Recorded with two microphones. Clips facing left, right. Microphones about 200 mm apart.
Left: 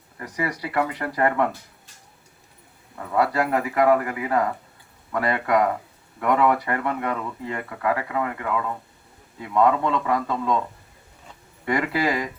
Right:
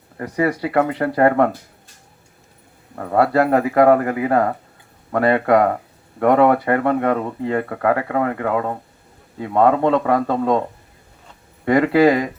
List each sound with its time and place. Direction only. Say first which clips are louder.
0.2 s speech: right 8 dB; 50° right (ahead or behind)
2.9 s speech: right 6 dB; 45° right (ahead or behind)
11.6 s speech: right 10 dB; 50° right (ahead or behind)